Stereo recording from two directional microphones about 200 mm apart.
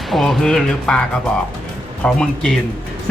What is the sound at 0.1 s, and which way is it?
Speech, centre (ahead or behind).